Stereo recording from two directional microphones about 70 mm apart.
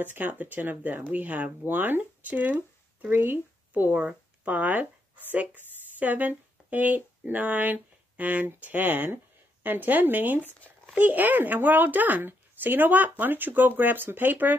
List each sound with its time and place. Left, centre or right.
0.0 s speech: right